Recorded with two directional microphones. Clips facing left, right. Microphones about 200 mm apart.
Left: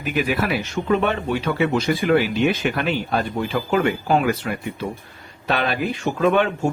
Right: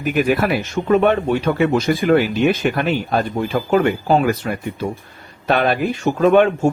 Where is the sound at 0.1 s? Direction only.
50° right (ahead or behind).